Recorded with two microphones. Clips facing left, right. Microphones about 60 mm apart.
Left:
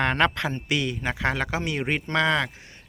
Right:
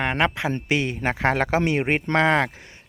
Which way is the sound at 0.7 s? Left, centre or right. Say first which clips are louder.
Right 4 dB; right.